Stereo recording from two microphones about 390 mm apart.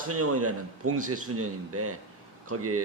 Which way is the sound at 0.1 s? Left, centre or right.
Right.